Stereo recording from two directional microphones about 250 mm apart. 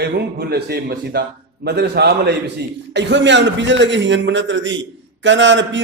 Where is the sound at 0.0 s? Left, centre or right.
Right.